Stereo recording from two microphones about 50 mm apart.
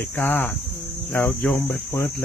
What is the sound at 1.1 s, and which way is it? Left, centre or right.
Cricket, left.